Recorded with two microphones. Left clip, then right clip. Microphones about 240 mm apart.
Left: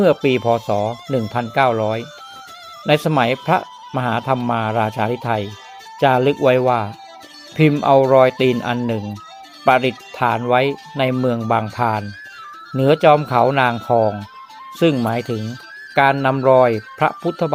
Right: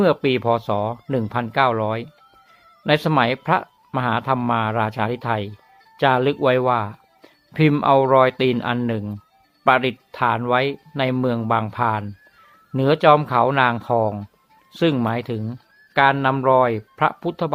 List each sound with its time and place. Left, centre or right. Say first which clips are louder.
0.0 s speech: left 3 dB; centre